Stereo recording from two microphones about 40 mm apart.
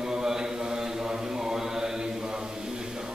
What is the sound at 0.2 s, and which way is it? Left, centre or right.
Mantra, centre.